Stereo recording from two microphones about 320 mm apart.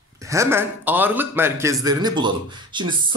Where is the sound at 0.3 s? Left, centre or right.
Centre.